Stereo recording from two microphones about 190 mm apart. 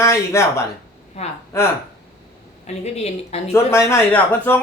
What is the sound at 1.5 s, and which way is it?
Speech, 15° left (ahead or behind).